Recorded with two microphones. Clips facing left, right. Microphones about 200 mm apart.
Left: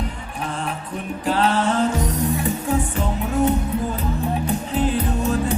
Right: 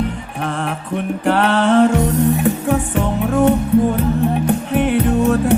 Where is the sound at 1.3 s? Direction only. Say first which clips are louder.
Right 5 dB; 70° right (ahead or behind).